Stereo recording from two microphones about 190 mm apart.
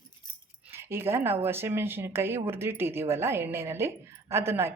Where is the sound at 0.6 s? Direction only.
10° right (ahead or behind).